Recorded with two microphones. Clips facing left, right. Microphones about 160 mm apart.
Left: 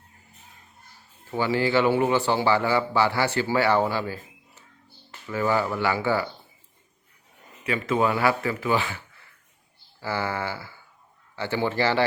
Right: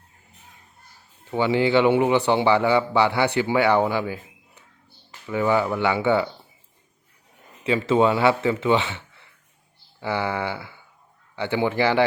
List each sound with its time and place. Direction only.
1.3 s a man's voice: 20° right (ahead or behind)
7.6 s a man's voice: 25° right (ahead or behind)